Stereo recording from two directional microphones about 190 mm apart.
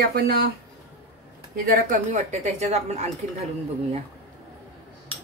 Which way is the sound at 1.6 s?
45° right (ahead or behind).